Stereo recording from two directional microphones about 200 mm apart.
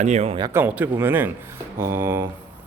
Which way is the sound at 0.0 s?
35° right (ahead or behind).